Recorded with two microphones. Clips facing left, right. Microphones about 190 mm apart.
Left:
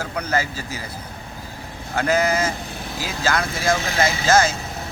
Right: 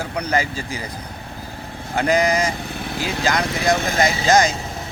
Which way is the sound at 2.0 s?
15° right (ahead or behind).